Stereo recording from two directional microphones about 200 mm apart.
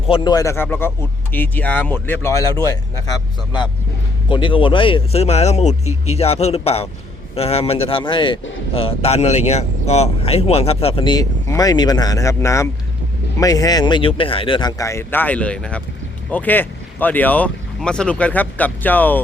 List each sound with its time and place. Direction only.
0.1 s a man's voice: 20° left (ahead or behind)